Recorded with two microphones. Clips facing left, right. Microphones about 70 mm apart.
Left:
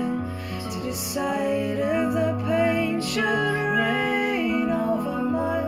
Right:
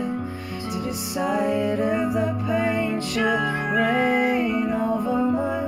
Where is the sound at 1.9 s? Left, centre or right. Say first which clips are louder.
Even; centre.